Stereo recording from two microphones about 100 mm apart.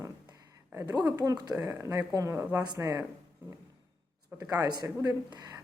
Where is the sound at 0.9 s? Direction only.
40° right (ahead or behind).